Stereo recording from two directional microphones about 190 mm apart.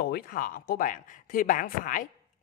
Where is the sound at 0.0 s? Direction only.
50° left (ahead or behind).